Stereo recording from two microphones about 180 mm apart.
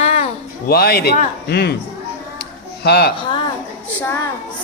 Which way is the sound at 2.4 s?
65° left (ahead or behind).